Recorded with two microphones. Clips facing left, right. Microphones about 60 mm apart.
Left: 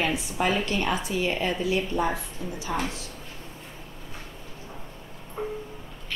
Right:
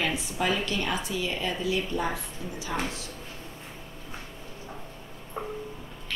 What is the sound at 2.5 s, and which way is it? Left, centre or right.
Speech, left.